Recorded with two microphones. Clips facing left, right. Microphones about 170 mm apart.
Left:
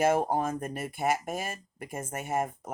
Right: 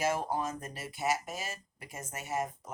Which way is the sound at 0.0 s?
55° left (ahead or behind).